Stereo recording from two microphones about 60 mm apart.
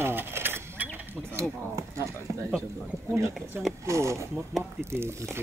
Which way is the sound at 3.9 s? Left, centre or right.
Right.